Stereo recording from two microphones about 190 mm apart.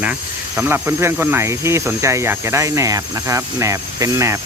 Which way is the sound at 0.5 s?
10° right (ahead or behind).